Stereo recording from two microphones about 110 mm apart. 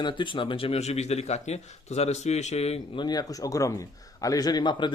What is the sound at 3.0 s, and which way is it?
Speech, 35° left (ahead or behind).